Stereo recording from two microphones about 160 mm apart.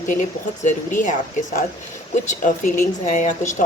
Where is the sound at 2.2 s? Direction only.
55° left (ahead or behind).